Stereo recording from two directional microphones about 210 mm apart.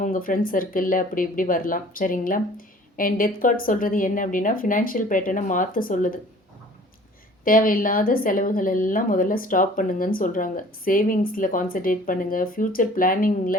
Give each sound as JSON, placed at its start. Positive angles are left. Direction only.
{"t": 0.0, "sound": "speech", "side_deg": 40}
{"t": 7.4, "sound": "speech", "side_deg": 40}